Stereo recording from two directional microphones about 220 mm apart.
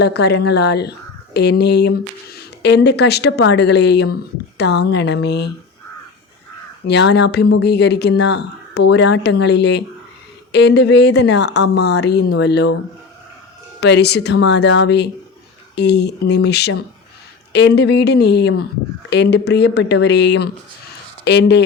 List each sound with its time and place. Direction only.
0.0 s speech: 50° left (ahead or behind)
6.8 s speech: 50° left (ahead or behind)
13.8 s speech: 50° left (ahead or behind)